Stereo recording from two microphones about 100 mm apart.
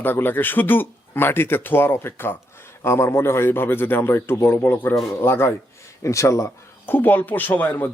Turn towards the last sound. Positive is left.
turn(degrees=20)  # may be behind; listen again after turning